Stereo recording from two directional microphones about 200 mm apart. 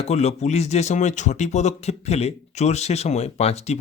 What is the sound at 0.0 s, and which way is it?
Speech, 35° left (ahead or behind).